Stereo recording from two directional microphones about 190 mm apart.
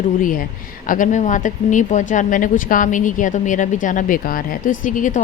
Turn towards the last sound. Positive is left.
turn(degrees=45)  # may be behind; listen again after turning